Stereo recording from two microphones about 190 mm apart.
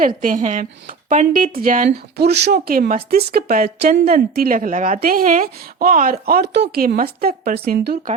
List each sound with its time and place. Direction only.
0.2 s a woman's voice: 45° right (ahead or behind)